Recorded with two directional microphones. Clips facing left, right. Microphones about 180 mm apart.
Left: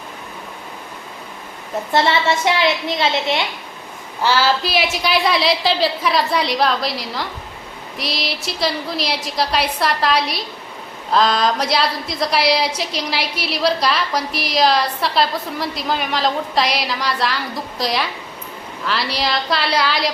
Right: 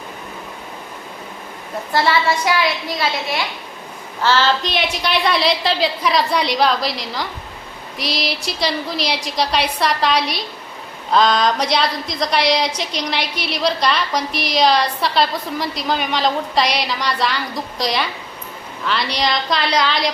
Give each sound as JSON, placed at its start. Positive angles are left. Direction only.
{"t": 1.9, "sound": "a woman's voice", "side_deg": 25}
{"t": 4.2, "sound": "a woman's voice", "side_deg": 10}